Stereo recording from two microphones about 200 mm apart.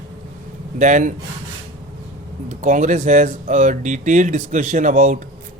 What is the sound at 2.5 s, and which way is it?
Speech, 40° right (ahead or behind).